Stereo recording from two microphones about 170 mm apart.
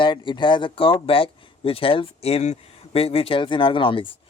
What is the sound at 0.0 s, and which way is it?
Speech, 30° left (ahead or behind).